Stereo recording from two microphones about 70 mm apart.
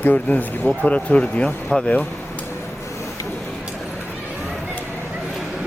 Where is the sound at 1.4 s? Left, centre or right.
Centre.